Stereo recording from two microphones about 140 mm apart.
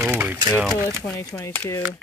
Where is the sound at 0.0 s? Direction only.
10° right (ahead or behind).